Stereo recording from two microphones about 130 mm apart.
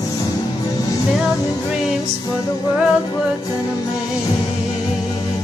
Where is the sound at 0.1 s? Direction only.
30° left (ahead or behind).